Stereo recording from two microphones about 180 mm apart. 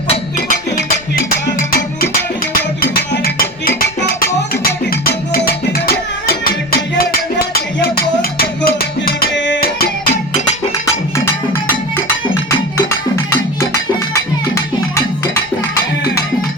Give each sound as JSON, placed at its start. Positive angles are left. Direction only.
{"t": 0.3, "sound": "music", "side_deg": 50}
{"t": 12.3, "sound": "music", "side_deg": 15}